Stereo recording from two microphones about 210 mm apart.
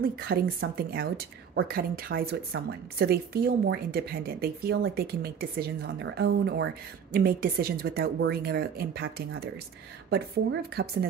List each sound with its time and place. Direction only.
0.0 s speech: 45° right (ahead or behind)